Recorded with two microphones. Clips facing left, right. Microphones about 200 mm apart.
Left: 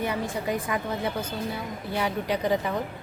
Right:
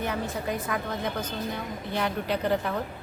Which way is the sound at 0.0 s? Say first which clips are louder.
Left 2 dB; 10° left (ahead or behind).